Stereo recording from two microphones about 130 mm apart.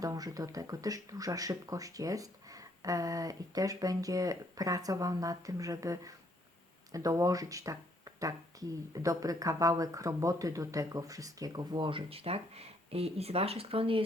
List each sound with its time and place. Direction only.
0.0 s speech: 30° right (ahead or behind); by 14.0 s 45° right (ahead or behind)